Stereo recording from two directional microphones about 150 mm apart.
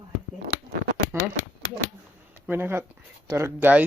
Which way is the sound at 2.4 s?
15° right (ahead or behind).